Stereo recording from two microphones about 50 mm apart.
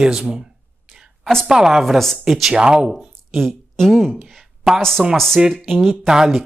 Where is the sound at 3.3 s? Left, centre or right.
Centre.